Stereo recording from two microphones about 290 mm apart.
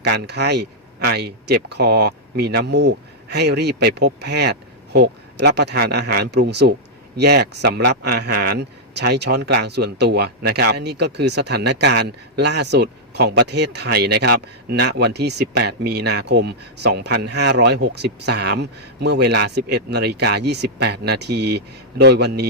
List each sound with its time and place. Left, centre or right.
0.0 s speech: right